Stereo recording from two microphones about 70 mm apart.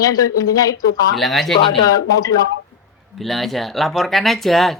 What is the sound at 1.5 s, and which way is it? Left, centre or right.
Speech, left.